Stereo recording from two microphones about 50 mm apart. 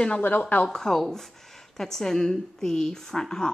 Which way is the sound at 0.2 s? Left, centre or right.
Left.